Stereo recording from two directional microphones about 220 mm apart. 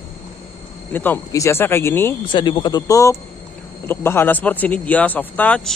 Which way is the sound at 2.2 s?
20° left (ahead or behind).